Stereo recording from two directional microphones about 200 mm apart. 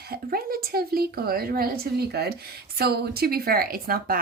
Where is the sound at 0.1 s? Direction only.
50° right (ahead or behind).